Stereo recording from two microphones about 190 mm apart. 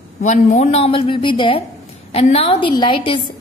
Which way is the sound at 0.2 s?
40° left (ahead or behind).